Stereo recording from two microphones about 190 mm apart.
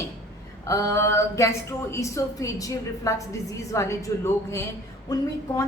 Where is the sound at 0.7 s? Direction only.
15° left (ahead or behind).